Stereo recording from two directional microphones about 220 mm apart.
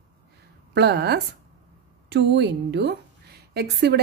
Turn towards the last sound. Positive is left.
turn(degrees=-50)  # may be behind; listen again after turning